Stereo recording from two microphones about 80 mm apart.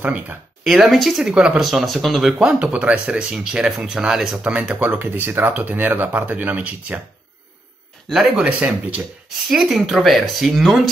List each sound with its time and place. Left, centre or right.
0.0 s speech: right
0.8 s speech: centre
1.3 s speech: centre
1.7 s speech: centre
2.3 s speech: centre
8.1 s speech: centre
8.5 s speech: centre
9.5 s speech: centre